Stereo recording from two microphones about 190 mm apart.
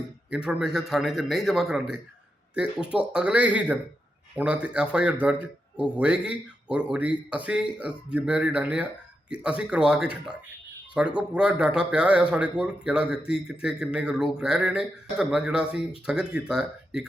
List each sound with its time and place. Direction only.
0.3 s speech: 5° right (ahead or behind)